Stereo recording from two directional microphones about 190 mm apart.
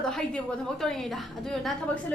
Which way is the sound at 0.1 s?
5° left (ahead or behind).